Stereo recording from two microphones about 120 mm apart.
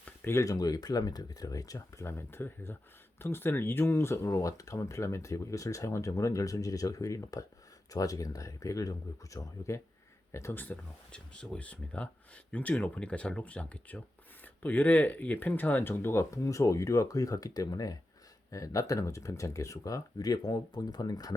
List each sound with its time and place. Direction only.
0.0 s speech: 20° left (ahead or behind)